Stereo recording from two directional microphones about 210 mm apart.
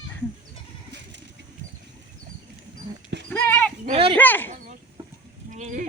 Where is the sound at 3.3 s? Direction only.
10° left (ahead or behind).